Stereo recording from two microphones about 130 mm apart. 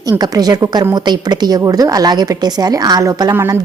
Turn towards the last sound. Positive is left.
turn(degrees=-20)  # may be behind; listen again after turning